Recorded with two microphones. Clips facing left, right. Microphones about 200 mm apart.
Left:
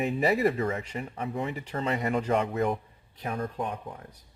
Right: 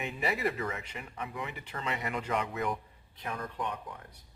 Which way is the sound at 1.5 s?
40° left (ahead or behind).